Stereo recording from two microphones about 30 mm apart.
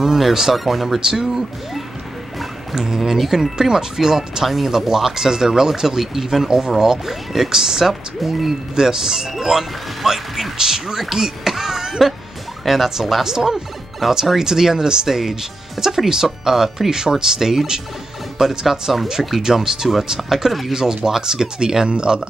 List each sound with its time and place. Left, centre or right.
0.0 s speech: centre
2.7 s speech: centre
3.5 s speech: centre
8.2 s speech: centre
8.7 s speech: centre
14.4 s speech: centre
21.8 s speech: right